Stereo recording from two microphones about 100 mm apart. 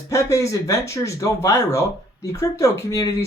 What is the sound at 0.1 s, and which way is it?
Speech, 30° left (ahead or behind).